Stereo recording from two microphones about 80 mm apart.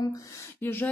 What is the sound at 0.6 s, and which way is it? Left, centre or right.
Speech, left.